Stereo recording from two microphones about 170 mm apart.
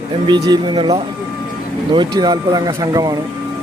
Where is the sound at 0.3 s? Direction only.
25° right (ahead or behind).